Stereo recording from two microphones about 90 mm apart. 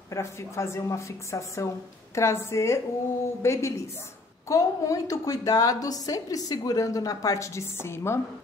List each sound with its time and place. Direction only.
0.1 s a woman's voice: 30° left (ahead or behind)